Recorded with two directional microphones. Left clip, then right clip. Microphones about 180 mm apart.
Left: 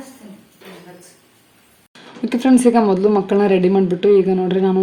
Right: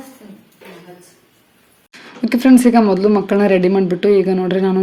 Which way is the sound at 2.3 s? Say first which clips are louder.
Right 2 dB; 20° right (ahead or behind).